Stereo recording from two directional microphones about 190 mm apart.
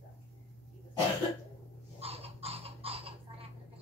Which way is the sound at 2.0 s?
30° right (ahead or behind).